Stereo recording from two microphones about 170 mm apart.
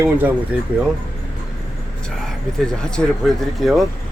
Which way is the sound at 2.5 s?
5° left (ahead or behind).